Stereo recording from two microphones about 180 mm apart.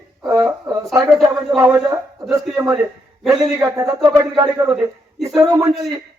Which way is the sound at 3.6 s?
15° right (ahead or behind).